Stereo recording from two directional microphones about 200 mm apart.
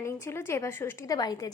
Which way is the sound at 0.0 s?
10° left (ahead or behind).